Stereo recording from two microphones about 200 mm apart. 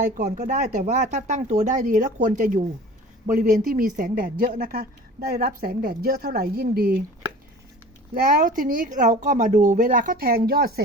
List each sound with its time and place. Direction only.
0.2 s speech: 35° right (ahead or behind)
8.1 s speech: 45° right (ahead or behind)